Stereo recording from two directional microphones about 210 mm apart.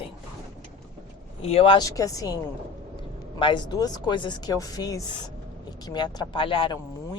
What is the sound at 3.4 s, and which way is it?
Speech, 20° left (ahead or behind).